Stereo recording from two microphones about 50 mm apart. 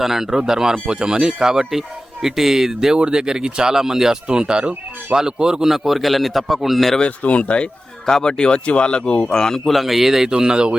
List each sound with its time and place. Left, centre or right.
0.0 s a man's voice: centre
7.0 s speech: left; by 10.8 s centre